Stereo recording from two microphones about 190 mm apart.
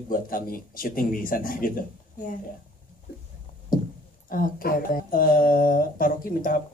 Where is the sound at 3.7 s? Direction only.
45° left (ahead or behind).